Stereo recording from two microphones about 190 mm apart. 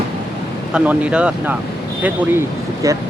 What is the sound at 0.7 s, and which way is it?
Speech, 5° right (ahead or behind).